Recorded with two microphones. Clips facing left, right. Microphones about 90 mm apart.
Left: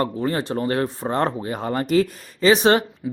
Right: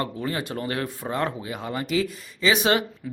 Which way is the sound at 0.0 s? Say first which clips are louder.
Left 5 dB; 35° left (ahead or behind).